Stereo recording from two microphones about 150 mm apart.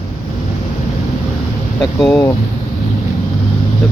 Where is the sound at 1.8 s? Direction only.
5° left (ahead or behind).